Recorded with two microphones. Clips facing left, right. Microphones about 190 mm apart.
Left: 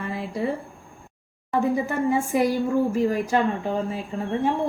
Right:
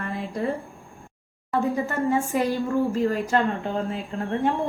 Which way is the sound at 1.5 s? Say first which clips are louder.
Left 2 dB; 10° left (ahead or behind).